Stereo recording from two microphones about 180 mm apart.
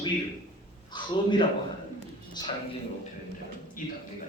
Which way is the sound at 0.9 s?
25° left (ahead or behind).